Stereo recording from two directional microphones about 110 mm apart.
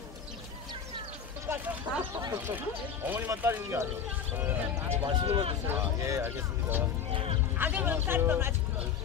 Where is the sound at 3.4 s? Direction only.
20° right (ahead or behind).